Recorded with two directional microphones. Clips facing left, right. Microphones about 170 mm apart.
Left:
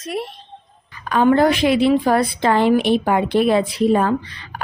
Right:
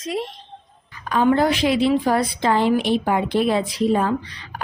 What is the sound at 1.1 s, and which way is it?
Speech, 60° left (ahead or behind).